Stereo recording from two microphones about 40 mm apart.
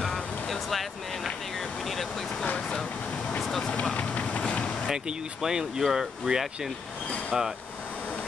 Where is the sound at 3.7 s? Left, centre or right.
Left.